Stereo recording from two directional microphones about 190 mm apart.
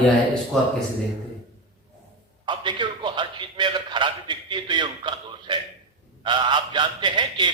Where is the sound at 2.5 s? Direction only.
25° right (ahead or behind).